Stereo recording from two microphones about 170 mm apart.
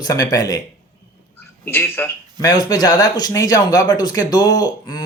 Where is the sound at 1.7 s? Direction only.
15° left (ahead or behind).